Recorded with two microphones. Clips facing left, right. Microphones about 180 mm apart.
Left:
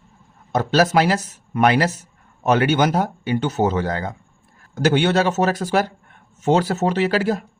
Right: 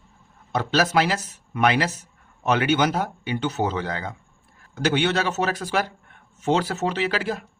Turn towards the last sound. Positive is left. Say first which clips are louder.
# left 6 dB
turn(degrees=40)  # may be behind; listen again after turning